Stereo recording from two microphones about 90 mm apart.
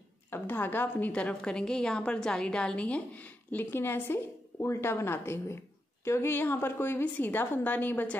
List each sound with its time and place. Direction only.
0.3 s a woman's voice: 20° left (ahead or behind)
3.5 s a woman's voice: 25° left (ahead or behind)